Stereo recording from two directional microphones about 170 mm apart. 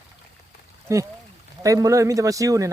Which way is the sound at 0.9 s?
15° right (ahead or behind).